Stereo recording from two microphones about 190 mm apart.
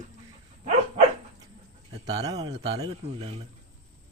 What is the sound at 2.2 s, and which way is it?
A man's voice, 20° right (ahead or behind).